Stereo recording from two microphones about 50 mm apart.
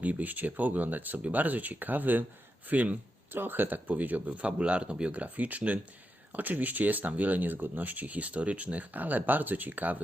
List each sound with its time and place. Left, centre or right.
0.0 s speech: right
3.3 s speech: right; by 5.2 s centre
5.2 s speech: right